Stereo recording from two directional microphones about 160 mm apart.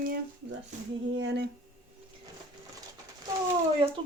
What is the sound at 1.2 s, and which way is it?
Speech, 90° right.